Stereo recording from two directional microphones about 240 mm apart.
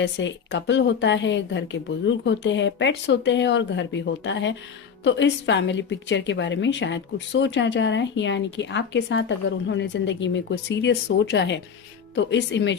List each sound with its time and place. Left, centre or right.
0.0 s a woman's voice: left